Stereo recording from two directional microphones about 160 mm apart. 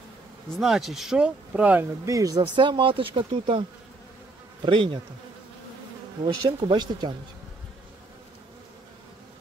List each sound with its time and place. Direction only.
0.6 s speech: centre (ahead or behind); by 3.6 s 30° right (ahead or behind)
4.6 s bee: 35° right (ahead or behind)
6.2 s speech: 30° right (ahead or behind)